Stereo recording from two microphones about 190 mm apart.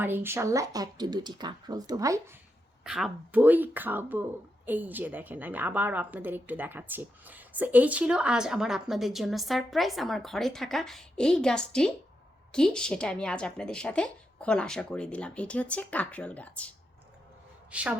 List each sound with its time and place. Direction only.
0.0 s speech: 10° right (ahead or behind)
2.8 s a woman's voice: 5° right (ahead or behind)
17.7 s a woman's voice: 5° right (ahead or behind)